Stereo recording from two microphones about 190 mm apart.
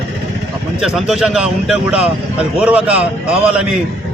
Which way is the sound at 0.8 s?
Centre (ahead or behind).